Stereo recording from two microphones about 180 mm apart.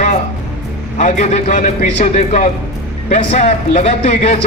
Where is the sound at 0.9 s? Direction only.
40° left (ahead or behind).